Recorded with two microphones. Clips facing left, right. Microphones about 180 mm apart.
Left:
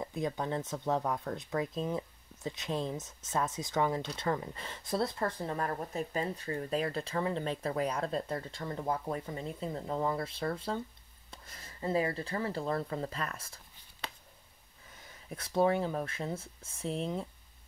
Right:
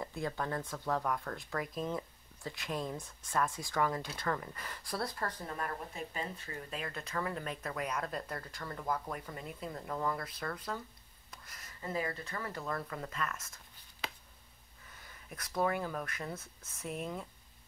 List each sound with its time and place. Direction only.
0.0 s speech: 20° left (ahead or behind)
15.2 s speech: 25° left (ahead or behind)